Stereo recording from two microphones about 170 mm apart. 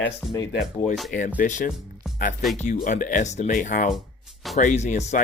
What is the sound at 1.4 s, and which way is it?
Speech, 50° left (ahead or behind).